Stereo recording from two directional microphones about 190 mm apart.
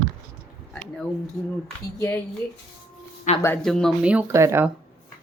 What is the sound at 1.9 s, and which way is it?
Speech, 20° left (ahead or behind).